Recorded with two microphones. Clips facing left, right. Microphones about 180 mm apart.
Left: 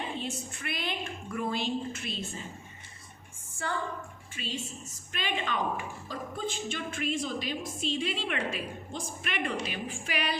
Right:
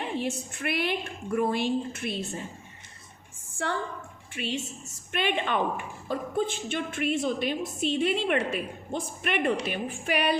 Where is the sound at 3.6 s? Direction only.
65° right (ahead or behind).